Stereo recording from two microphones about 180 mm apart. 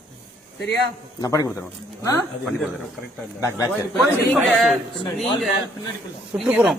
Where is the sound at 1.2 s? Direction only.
20° left (ahead or behind).